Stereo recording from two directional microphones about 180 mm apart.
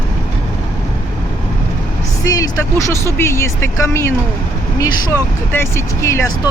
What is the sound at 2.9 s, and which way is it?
Speech, 15° left (ahead or behind).